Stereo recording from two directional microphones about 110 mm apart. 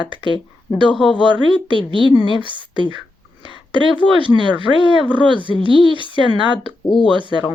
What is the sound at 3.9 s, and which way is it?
Speech, 50° left (ahead or behind).